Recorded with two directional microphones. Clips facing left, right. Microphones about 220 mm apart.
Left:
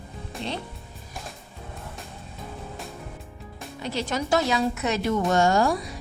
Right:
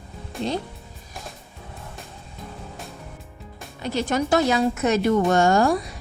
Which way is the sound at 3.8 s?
50° right (ahead or behind).